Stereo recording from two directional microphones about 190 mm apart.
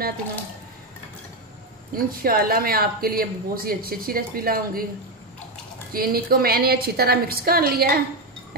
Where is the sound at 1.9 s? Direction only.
50° right (ahead or behind).